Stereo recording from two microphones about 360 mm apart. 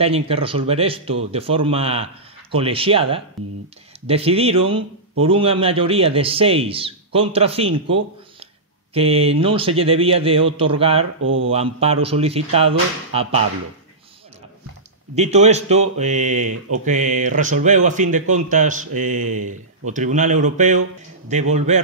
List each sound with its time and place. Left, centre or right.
0.0 s a man's voice: centre
3.4 s speech: centre
4.1 s a man's voice: centre
8.9 s a man's voice: centre
11.2 s speech: right
11.5 s a man's voice: centre
15.1 s speech: centre